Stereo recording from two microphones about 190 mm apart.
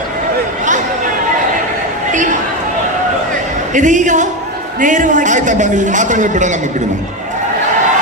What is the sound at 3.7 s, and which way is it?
A man's voice, 40° right (ahead or behind).